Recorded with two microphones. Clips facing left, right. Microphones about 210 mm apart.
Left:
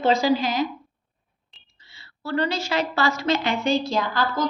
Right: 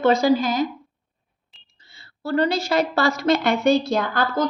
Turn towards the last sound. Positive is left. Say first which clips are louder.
# right 2 dB
turn(degrees=-60)  # may be behind; listen again after turning